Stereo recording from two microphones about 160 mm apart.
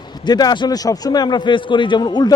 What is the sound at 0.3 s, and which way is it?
A man's voice, 25° left (ahead or behind).